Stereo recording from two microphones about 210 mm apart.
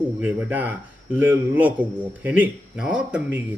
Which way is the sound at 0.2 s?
5° right (ahead or behind).